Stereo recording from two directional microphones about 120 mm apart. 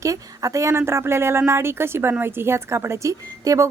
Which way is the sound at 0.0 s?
25° right (ahead or behind).